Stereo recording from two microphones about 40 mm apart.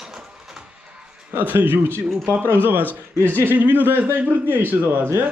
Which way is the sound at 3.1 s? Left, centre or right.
Right.